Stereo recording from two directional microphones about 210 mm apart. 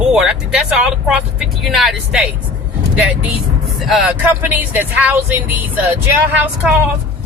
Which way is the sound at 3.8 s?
Centre (ahead or behind).